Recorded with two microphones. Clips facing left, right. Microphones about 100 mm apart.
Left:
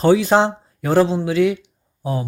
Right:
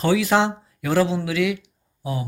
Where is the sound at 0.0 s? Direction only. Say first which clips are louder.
Left 5 dB; 30° left (ahead or behind).